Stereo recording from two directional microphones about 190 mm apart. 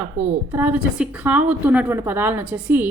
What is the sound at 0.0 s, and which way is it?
A woman's voice, 10° right (ahead or behind).